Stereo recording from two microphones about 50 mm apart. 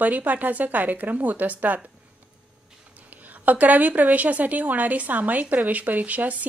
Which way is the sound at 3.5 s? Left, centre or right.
Right.